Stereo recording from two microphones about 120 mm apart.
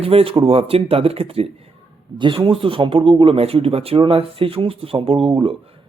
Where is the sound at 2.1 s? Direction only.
45° right (ahead or behind).